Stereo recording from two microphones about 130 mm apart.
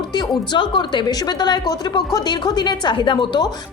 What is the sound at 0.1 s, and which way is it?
A woman's voice, 35° left (ahead or behind).